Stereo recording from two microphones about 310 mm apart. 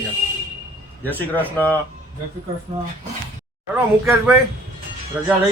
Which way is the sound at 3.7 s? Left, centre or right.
Centre.